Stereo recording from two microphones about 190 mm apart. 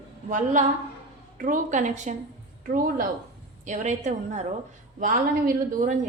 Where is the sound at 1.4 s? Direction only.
40° right (ahead or behind).